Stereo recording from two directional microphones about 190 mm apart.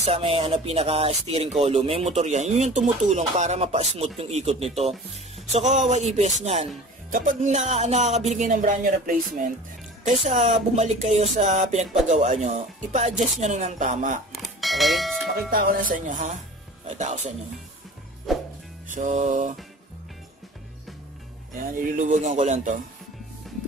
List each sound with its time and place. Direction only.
0.0 s speech: 30° right (ahead or behind)
14.3 s bell: centre (ahead or behind)
15.5 s speech: 45° right (ahead or behind)
18.3 s music: centre (ahead or behind)
18.9 s speech: 40° right (ahead or behind)
21.5 s speech: 45° right (ahead or behind)